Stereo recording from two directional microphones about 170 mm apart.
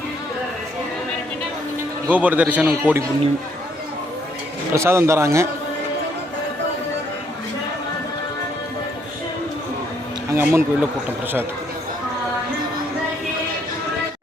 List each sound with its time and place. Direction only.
2.0 s a man's voice: 10° right (ahead or behind)
4.7 s a man's voice: 15° right (ahead or behind)
10.3 s a man's voice: 10° right (ahead or behind)